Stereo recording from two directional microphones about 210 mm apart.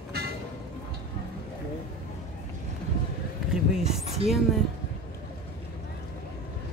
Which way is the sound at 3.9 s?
30° right (ahead or behind).